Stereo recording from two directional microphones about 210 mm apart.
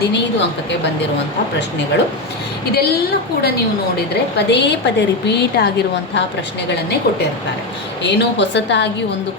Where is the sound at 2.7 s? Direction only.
50° left (ahead or behind).